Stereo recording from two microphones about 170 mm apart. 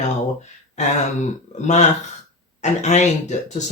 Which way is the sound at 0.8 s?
40° left (ahead or behind).